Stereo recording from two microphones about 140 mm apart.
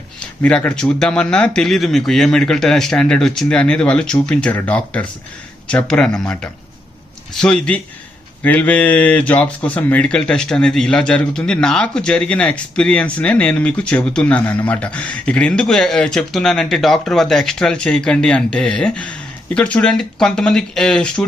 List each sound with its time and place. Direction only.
0.2 s speech: 10° left (ahead or behind)